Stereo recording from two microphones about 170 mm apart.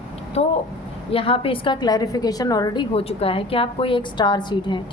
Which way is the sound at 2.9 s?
35° left (ahead or behind).